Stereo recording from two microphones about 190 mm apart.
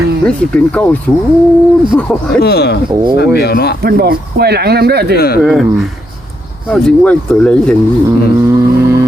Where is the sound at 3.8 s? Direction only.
55° right (ahead or behind).